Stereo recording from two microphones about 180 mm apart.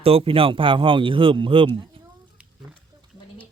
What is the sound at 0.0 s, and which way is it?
Speech, 30° right (ahead or behind).